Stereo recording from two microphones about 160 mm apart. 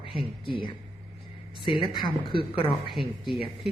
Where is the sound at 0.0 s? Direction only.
35° left (ahead or behind).